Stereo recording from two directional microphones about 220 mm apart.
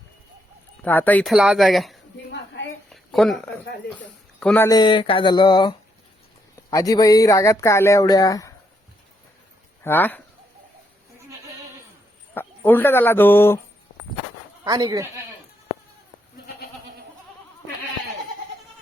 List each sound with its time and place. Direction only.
0.8 s speech: 10° left (ahead or behind)
2.9 s a sound: centre (ahead or behind)
4.4 s speech: 5° left (ahead or behind)
9.8 s speech: 10° left (ahead or behind)
12.3 s speech: 10° left (ahead or behind)
14.6 s speech: 15° right (ahead or behind)